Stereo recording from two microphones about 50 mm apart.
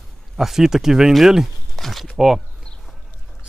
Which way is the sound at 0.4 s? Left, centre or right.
Centre.